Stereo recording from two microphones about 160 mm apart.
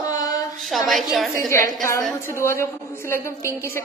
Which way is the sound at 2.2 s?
15° left (ahead or behind).